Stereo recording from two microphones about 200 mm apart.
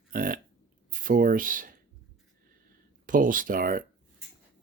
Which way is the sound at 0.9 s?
45° right (ahead or behind).